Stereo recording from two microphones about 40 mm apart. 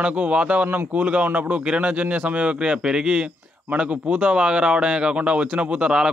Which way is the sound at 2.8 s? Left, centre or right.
Centre.